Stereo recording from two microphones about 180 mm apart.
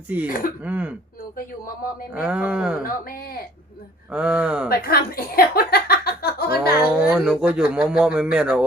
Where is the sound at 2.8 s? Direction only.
55° left (ahead or behind).